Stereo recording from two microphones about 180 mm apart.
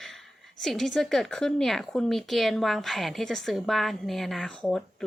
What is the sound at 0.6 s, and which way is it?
Speech, centre (ahead or behind).